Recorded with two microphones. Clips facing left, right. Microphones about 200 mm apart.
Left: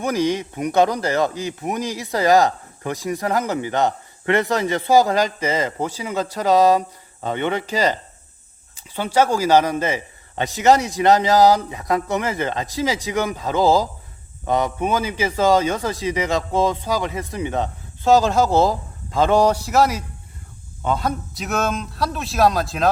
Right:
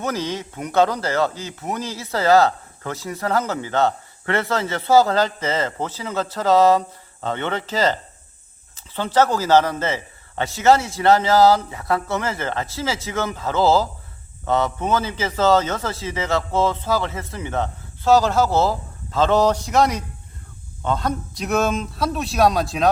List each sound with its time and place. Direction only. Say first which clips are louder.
0.0 s a man's voice: left 5 dB; 15° left (ahead or behind)